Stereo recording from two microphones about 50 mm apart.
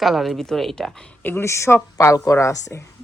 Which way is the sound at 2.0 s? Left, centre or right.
Left.